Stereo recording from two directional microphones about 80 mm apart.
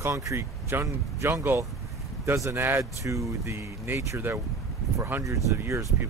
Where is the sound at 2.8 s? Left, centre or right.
Right.